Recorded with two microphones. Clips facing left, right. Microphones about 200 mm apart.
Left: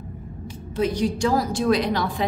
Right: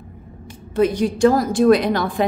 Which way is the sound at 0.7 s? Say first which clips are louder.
Right 5 dB; 55° right (ahead or behind).